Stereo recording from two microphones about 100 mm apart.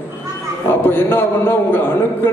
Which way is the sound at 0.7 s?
20° left (ahead or behind).